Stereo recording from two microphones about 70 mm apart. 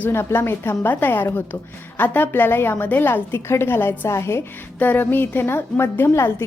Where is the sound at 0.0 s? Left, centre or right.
Left.